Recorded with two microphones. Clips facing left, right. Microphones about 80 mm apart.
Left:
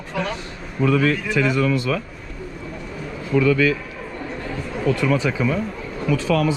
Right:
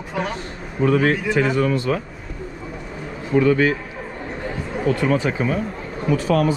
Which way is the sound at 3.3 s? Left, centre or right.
Right.